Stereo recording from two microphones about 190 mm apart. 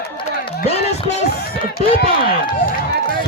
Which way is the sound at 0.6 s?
35° left (ahead or behind).